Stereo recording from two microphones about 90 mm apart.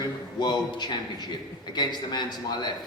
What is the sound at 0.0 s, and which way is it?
A man's voice, 50° left (ahead or behind).